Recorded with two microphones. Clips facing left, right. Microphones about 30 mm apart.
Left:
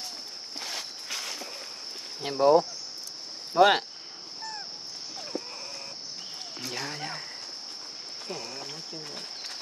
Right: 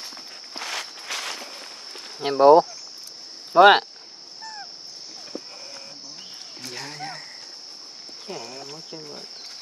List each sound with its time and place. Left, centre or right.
0.6 s walk: right
2.1 s speech: right
6.6 s a sound: centre
8.3 s speech: centre